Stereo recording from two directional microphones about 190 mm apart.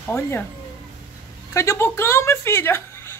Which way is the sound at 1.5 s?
15° left (ahead or behind).